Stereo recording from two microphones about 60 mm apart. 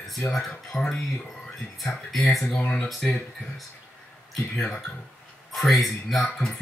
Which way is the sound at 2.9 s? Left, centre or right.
Centre.